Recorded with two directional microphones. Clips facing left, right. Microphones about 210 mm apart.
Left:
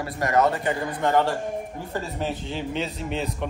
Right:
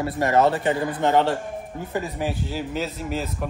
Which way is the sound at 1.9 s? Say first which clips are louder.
Right 2 dB; 10° right (ahead or behind).